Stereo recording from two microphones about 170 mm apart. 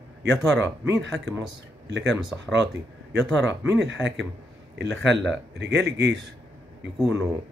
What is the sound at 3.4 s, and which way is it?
Speech, 90° right.